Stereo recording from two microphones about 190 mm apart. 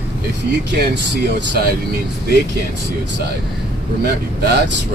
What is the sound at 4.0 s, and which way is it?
Speech, 60° right (ahead or behind).